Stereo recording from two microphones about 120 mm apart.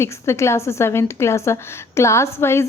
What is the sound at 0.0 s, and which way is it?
A woman's voice, 25° left (ahead or behind).